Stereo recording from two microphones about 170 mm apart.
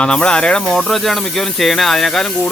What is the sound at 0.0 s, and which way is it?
Speech, 5° left (ahead or behind).